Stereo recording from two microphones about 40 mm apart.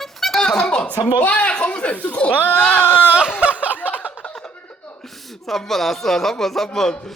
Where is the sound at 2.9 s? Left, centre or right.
Left.